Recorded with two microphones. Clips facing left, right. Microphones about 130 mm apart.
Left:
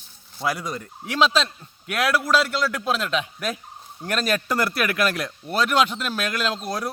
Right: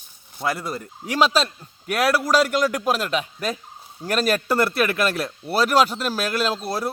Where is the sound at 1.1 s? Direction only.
40° right (ahead or behind).